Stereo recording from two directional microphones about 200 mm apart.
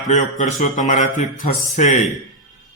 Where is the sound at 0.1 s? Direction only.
40° left (ahead or behind).